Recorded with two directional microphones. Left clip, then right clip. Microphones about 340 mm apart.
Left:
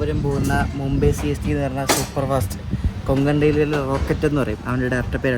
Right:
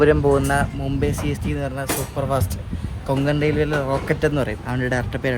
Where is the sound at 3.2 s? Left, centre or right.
Centre.